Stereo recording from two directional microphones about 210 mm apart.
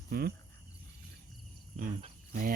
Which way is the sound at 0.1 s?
50° right (ahead or behind).